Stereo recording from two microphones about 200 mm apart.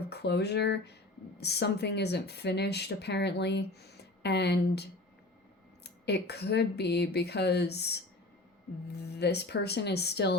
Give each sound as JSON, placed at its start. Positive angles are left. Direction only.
{"t": 0.1, "sound": "speech", "side_deg": 55}